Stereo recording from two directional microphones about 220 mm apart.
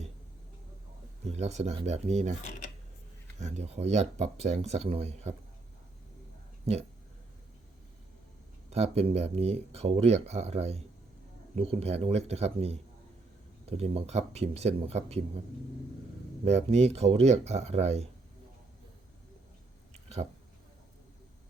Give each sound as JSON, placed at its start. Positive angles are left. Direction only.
{"t": 1.2, "sound": "speech", "side_deg": -30}
{"t": 3.3, "sound": "speech", "side_deg": -30}
{"t": 8.7, "sound": "speech", "side_deg": -30}
{"t": 16.4, "sound": "speech", "side_deg": -30}